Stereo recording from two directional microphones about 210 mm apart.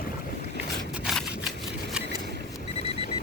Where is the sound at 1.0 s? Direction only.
Centre (ahead or behind).